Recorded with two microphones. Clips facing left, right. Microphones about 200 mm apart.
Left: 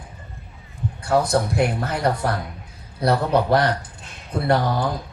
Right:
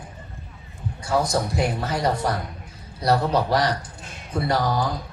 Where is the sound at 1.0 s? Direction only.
60° left (ahead or behind).